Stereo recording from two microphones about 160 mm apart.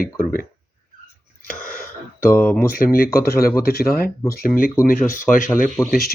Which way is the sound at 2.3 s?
10° left (ahead or behind).